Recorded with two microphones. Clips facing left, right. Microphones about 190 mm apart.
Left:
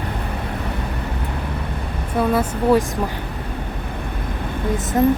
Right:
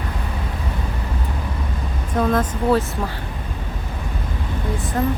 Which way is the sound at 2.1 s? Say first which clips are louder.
Left 1 dB; 10° left (ahead or behind).